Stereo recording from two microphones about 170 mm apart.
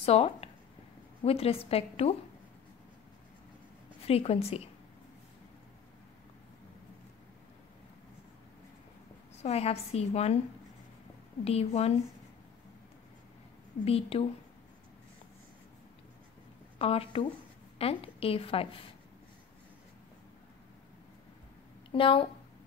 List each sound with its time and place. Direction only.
0.0 s a woman's voice: 35° left (ahead or behind)
4.1 s a woman's voice: 35° left (ahead or behind)
9.4 s a woman's voice: 40° left (ahead or behind)
11.4 s a woman's voice: 35° left (ahead or behind)
13.8 s a woman's voice: 35° left (ahead or behind)
16.7 s a woman's voice: 35° left (ahead or behind)
21.9 s a woman's voice: 30° left (ahead or behind)